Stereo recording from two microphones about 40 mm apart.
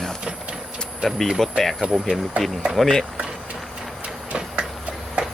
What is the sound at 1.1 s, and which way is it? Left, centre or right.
Speech, centre.